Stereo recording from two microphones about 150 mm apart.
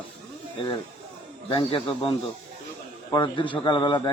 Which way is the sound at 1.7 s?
35° left (ahead or behind).